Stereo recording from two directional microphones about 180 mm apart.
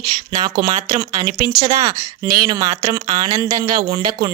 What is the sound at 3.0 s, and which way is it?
Speech, 40° right (ahead or behind).